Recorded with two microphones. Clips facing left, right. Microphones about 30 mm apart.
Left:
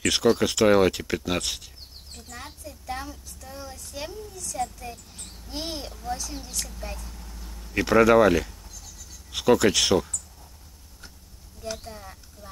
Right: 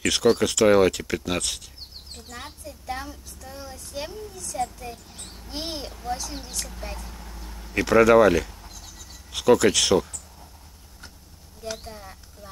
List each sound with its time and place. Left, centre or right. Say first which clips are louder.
0.0 s speech: right 1 dB; centre
2.3 s child singing: right 1 dB; centre
4.1 s a sound: right 1 dB; centre
5.3 s a child's voice: right 1 dB; centre
6.8 s vehicle: right 1 dB; centre
7.8 s speech: right 2 dB; centre
8.6 s a sound: right 2 dB; right
9.3 s speech: right 2 dB; centre
11.7 s speech: right 1 dB; centre